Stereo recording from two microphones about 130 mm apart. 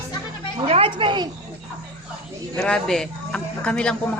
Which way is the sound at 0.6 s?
45° right (ahead or behind).